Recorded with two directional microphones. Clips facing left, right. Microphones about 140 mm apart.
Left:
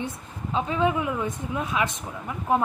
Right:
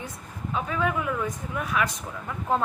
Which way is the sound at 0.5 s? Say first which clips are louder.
Left 3 dB; 25° left (ahead or behind).